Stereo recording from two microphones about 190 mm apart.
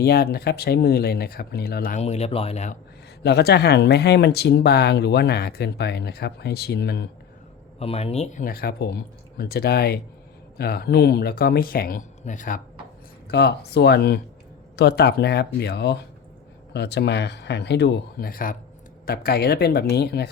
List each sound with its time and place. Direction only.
0.0 s speech: 55° left (ahead or behind)
2.0 s speech: 35° left (ahead or behind)
3.2 s speech: 60° left (ahead or behind)
7.8 s speech: 30° left (ahead or behind)
13.2 s speech: 60° left (ahead or behind)